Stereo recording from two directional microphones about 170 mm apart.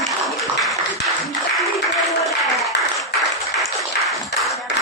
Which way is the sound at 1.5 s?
Centre (ahead or behind).